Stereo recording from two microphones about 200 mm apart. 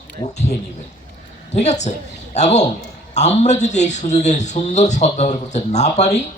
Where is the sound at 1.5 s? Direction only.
35° left (ahead or behind).